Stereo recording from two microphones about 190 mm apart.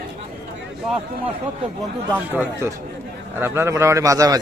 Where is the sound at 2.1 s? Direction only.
10° right (ahead or behind).